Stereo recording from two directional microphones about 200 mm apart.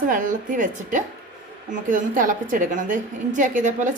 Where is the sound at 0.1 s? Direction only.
40° right (ahead or behind).